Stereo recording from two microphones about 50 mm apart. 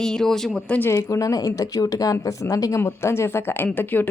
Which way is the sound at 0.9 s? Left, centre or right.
Left.